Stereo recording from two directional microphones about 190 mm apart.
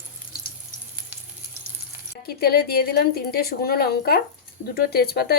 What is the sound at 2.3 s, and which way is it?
Speech, 55° left (ahead or behind).